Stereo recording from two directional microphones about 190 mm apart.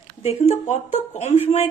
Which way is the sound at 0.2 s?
35° left (ahead or behind).